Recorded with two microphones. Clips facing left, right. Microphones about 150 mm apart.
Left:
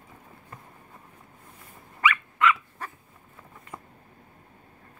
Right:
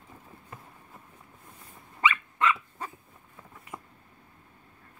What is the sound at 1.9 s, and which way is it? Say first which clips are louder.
Dog: left 2 dB; 25° right (ahead or behind).